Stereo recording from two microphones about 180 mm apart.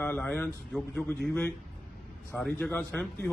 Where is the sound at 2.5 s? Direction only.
10° left (ahead or behind).